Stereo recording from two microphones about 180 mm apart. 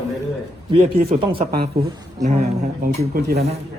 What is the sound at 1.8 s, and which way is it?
Speech, 60° right (ahead or behind).